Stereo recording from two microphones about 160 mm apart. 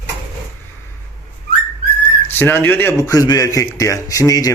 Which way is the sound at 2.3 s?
10° left (ahead or behind).